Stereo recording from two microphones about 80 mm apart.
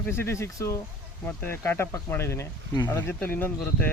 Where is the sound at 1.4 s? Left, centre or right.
Left.